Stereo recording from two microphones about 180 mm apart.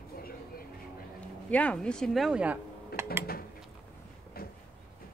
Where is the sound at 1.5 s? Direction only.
5° left (ahead or behind).